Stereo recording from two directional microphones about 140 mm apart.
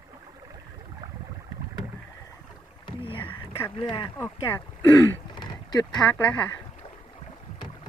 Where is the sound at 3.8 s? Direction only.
35° left (ahead or behind).